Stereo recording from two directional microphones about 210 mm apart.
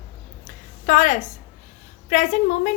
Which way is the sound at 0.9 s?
40° left (ahead or behind).